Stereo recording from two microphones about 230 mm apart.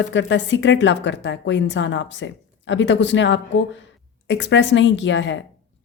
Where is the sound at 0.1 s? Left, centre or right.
Left.